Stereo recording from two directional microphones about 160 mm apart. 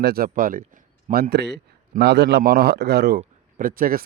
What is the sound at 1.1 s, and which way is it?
A man's voice, 80° right.